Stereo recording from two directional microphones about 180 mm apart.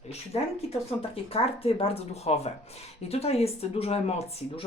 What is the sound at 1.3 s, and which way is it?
Speech, 35° left (ahead or behind).